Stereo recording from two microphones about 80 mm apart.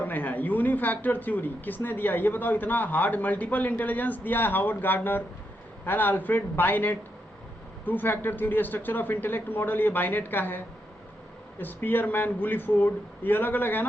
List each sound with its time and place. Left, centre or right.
0.0 s speech: left
11.6 s speech: left